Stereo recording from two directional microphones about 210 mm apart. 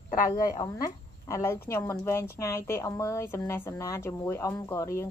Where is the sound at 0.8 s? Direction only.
15° left (ahead or behind).